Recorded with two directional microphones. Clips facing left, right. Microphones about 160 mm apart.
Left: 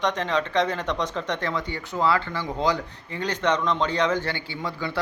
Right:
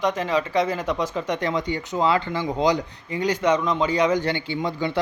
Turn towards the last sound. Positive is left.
turn(degrees=-20)  # may be behind; listen again after turning